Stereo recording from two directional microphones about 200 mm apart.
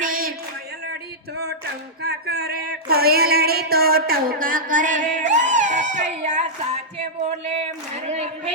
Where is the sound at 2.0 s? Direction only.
55° right (ahead or behind); by 6.4 s 35° right (ahead or behind).